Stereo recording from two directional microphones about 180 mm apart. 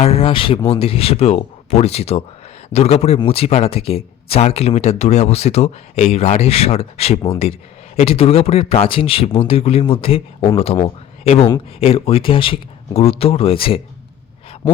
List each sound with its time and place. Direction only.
0.0 s speech: 35° left (ahead or behind)